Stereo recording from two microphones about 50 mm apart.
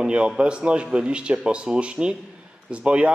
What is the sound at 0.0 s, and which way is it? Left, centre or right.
A man's voice, right.